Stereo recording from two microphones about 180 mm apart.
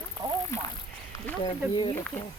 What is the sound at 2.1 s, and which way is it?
Speech, 40° left (ahead or behind).